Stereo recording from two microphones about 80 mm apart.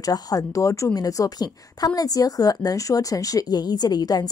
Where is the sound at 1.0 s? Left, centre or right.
Left.